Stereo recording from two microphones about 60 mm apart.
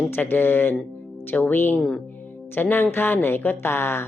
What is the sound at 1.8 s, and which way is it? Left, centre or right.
Speech, centre.